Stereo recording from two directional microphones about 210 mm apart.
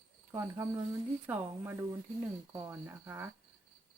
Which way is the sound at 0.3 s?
15° right (ahead or behind).